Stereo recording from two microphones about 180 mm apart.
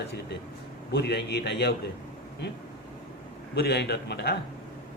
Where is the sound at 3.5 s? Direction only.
65° left (ahead or behind).